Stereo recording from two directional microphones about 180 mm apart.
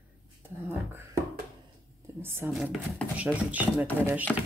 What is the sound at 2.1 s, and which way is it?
Speech, 15° right (ahead or behind).